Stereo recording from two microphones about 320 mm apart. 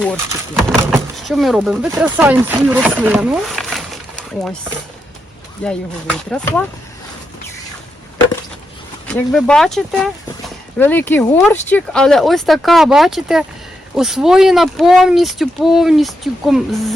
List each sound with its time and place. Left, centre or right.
0.0 s speech: centre
5.6 s speech: centre
9.0 s speech: centre